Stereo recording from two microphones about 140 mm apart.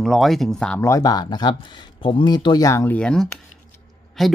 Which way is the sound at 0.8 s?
25° left (ahead or behind).